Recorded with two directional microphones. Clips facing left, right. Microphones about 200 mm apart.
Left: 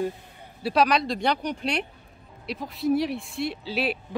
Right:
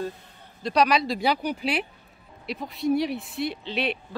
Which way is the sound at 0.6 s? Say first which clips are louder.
Even; 5° left (ahead or behind).